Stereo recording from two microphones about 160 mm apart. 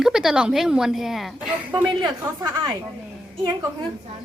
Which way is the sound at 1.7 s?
30° right (ahead or behind).